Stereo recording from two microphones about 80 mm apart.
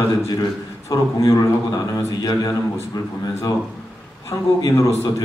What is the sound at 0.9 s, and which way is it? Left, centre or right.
Speech, left.